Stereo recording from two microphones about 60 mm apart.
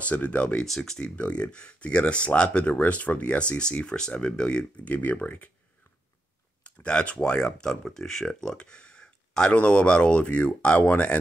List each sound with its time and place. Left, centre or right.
0.0 s speech: left
0.7 s speech: centre; by 5.5 s left
6.6 s speech: centre